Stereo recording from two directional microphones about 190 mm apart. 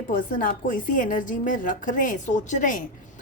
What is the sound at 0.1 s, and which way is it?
A woman's voice, 45° left (ahead or behind).